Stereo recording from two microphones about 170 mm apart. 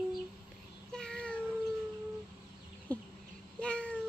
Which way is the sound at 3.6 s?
5° left (ahead or behind).